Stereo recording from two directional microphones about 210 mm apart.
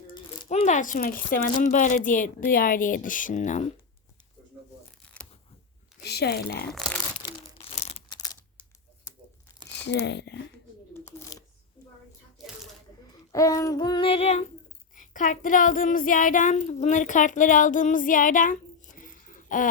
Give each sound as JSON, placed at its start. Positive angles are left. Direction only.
{"t": 0.4, "sound": "speech", "side_deg": 35}
{"t": 5.0, "sound": "tearing", "side_deg": 5}
{"t": 6.0, "sound": "speech", "side_deg": 50}
{"t": 6.7, "sound": "speech", "side_deg": 0}
{"t": 7.3, "sound": "a sound", "side_deg": 25}
{"t": 9.7, "sound": "speech", "side_deg": 55}
{"t": 10.9, "sound": "shuffling cards", "side_deg": 15}
{"t": 12.4, "sound": "a sound", "side_deg": 0}
{"t": 13.3, "sound": "female singing", "side_deg": 15}
{"t": 14.9, "sound": "child singing", "side_deg": 40}